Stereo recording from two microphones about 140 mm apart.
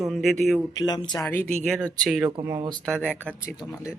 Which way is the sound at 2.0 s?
Centre (ahead or behind).